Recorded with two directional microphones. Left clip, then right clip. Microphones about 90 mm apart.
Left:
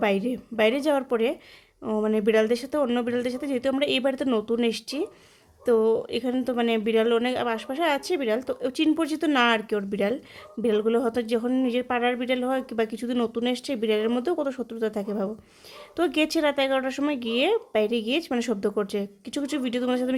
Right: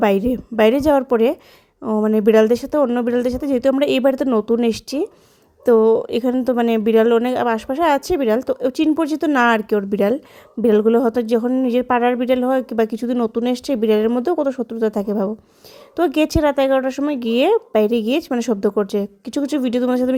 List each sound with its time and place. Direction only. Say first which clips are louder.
0.0 s a woman's voice: right 8 dB; 50° right (ahead or behind)
1.8 s speech: right 7 dB; 20° right (ahead or behind)
2.1 s a woman's voice: right 9 dB; 50° right (ahead or behind)
9.4 s a woman's voice: right 7 dB; 50° right (ahead or behind); by 17.0 s 35° right (ahead or behind)
17.1 s a woman's voice: right 8 dB; 50° right (ahead or behind)